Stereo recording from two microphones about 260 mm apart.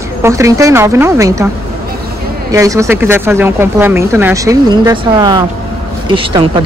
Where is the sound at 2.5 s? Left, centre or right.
Centre.